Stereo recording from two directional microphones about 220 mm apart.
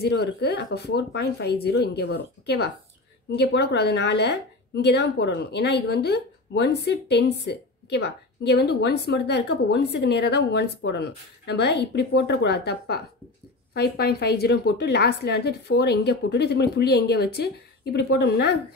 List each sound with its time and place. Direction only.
0.0 s a woman's voice: 50° left (ahead or behind)